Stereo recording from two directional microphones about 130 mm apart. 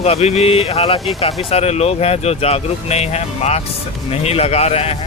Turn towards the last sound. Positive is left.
turn(degrees=55)  # may be behind; listen again after turning